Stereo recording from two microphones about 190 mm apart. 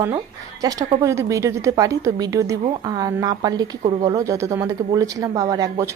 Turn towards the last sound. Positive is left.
turn(degrees=-20)  # may be behind; listen again after turning